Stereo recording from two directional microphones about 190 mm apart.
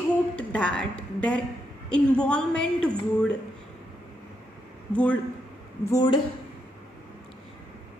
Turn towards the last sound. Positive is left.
turn(degrees=20)  # may be behind; listen again after turning